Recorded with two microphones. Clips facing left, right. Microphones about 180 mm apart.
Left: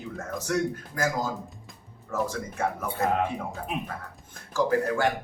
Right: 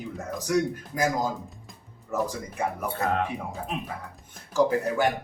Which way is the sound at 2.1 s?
15° right (ahead or behind).